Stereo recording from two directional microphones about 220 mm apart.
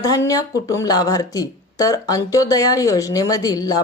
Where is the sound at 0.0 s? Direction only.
15° left (ahead or behind).